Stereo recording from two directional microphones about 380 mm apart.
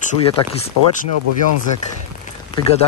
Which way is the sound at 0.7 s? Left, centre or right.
Right.